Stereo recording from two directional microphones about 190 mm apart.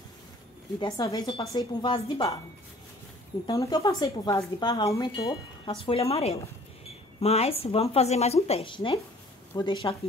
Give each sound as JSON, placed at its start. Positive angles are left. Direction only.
{"t": 0.7, "sound": "speech", "side_deg": 20}
{"t": 3.4, "sound": "speech", "side_deg": 20}